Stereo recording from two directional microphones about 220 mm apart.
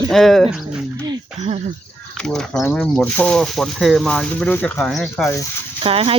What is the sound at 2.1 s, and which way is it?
Speech, centre (ahead or behind).